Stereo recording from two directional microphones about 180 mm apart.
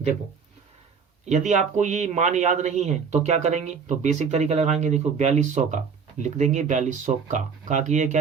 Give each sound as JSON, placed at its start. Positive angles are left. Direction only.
{"t": 1.3, "sound": "speech", "side_deg": -40}